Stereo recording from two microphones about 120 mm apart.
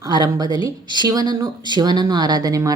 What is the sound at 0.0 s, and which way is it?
Speech, 35° right (ahead or behind).